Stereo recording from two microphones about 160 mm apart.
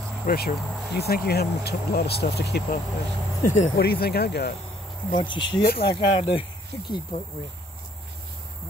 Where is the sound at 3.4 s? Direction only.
50° left (ahead or behind).